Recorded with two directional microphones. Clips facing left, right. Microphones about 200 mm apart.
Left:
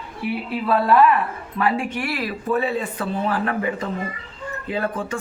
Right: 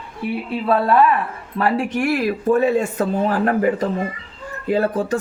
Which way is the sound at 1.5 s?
40° right (ahead or behind).